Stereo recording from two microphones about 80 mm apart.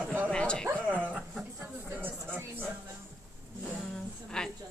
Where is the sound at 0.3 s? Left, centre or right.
Centre.